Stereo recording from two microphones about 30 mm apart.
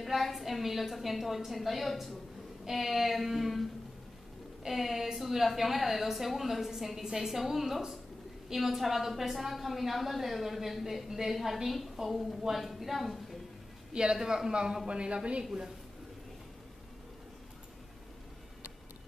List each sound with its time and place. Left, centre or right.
0.0 s a woman's voice: centre
4.6 s a woman's voice: centre
14.2 s a man's voice: right
14.9 s speech: right